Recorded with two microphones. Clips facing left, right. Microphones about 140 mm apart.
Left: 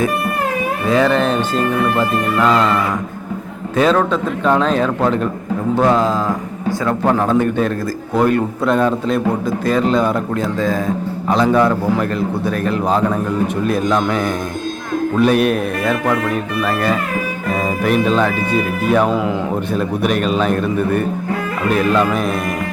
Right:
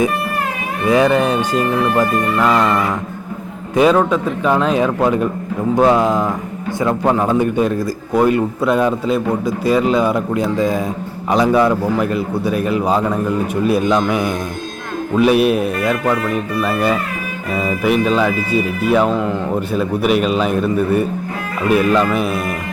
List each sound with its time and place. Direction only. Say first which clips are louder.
0.9 s a man's voice: right 2 dB; 15° right (ahead or behind)
17.6 s a man's voice: right 1 dB; 5° right (ahead or behind)